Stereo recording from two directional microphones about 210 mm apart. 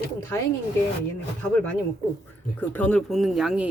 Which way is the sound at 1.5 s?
5° left (ahead or behind).